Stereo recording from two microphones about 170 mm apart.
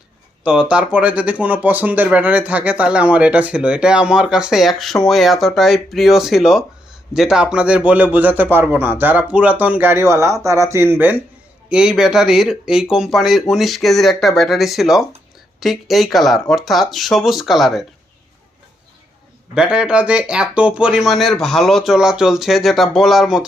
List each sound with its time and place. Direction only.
0.4 s speech: 5° right (ahead or behind)
19.5 s speech: 5° right (ahead or behind)